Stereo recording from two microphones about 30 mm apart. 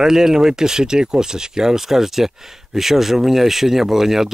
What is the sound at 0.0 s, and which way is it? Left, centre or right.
Speech, centre.